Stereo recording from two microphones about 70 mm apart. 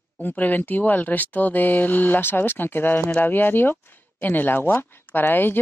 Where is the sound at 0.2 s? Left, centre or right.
Left.